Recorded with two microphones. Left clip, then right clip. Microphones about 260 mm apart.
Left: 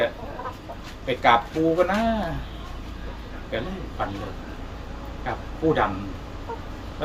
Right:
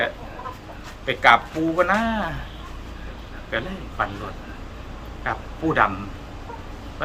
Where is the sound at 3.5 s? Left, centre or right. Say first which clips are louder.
Right 3 dB; centre.